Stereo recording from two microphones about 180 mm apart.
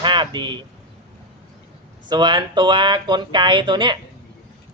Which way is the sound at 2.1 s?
25° right (ahead or behind).